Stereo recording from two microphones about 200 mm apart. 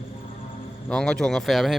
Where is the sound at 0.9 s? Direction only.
5° left (ahead or behind).